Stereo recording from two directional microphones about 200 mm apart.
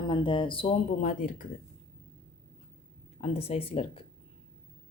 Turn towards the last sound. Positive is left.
turn(degrees=30)  # may be behind; listen again after turning